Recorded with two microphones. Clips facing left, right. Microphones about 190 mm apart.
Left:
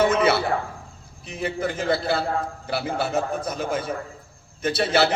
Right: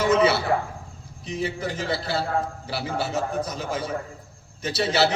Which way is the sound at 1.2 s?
55° left (ahead or behind).